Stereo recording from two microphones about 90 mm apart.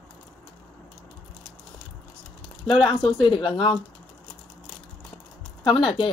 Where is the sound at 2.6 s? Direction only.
75° left (ahead or behind).